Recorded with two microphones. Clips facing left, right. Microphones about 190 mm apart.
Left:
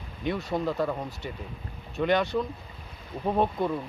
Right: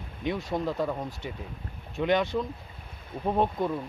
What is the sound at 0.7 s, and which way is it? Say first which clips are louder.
Speech: left 1 dB; centre (ahead or behind).